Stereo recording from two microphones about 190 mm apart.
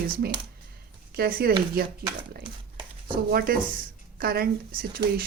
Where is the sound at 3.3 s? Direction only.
50° right (ahead or behind).